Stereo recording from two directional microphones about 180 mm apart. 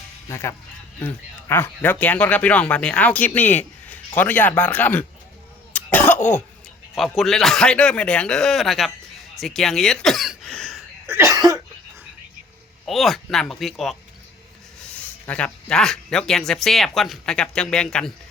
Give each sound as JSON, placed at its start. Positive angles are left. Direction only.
{"t": 0.3, "sound": "speech", "side_deg": 15}
{"t": 5.7, "sound": "cough", "side_deg": 10}
{"t": 6.9, "sound": "speech", "side_deg": 0}
{"t": 9.3, "sound": "throat clearing", "side_deg": 0}
{"t": 11.0, "sound": "cough", "side_deg": -15}
{"t": 12.8, "sound": "speech", "side_deg": 0}
{"t": 15.3, "sound": "speech", "side_deg": 5}